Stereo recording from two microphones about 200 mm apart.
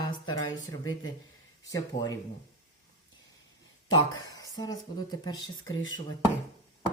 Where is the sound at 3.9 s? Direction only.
20° left (ahead or behind).